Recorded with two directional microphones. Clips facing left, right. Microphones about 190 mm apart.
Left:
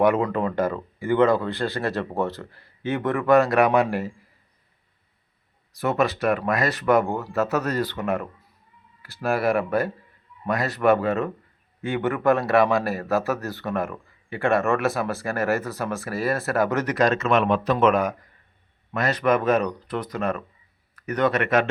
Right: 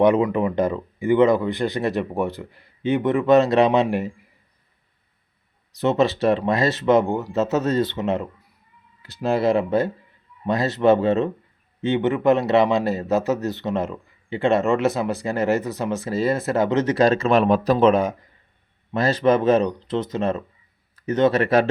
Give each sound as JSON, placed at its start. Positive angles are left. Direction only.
{"t": 0.0, "sound": "speech", "side_deg": -15}
{"t": 5.8, "sound": "a man's voice", "side_deg": -25}